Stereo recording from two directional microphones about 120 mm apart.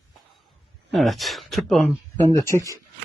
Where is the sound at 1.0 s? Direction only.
Centre (ahead or behind).